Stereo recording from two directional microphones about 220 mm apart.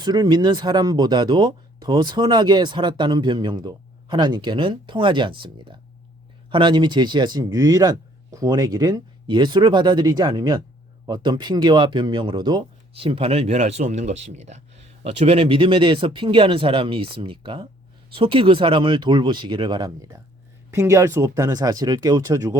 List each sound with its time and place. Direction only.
0.0 s speech: 20° right (ahead or behind)